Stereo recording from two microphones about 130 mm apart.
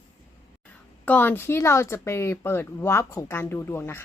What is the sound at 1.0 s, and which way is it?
Speech, 15° left (ahead or behind).